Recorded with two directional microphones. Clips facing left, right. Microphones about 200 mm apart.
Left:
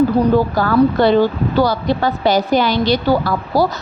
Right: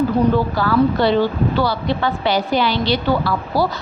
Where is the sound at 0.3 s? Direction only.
45° left (ahead or behind).